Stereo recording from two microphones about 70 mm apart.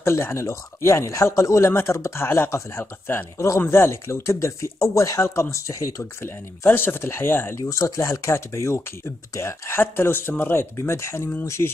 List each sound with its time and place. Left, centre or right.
0.0 s speech: left
3.3 s speech: left
6.2 s speech: left
7.5 s speech: left
10.8 s speech: left